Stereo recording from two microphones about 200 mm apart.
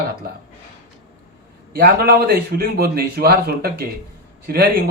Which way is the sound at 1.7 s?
50° right (ahead or behind).